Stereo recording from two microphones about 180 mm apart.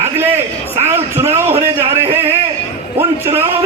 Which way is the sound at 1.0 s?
35° right (ahead or behind).